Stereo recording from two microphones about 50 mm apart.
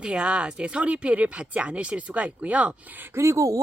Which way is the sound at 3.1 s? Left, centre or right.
Right.